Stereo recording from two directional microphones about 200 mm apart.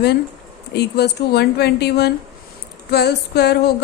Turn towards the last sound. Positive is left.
turn(degrees=55)  # may be behind; listen again after turning